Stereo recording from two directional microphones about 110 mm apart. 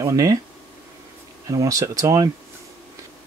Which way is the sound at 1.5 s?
30° right (ahead or behind).